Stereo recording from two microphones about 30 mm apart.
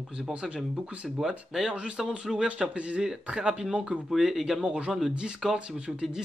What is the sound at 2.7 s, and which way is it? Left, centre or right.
Speech, right.